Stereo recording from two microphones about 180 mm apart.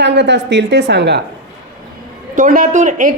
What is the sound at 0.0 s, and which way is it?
A woman's voice, 75° right (ahead or behind).